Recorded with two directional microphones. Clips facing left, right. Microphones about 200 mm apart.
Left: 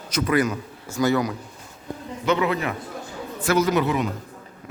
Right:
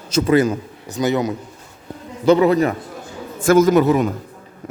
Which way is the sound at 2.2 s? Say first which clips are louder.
Right 9 dB; 35° right (ahead or behind).